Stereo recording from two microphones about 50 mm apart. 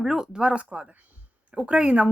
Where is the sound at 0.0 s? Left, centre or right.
Centre.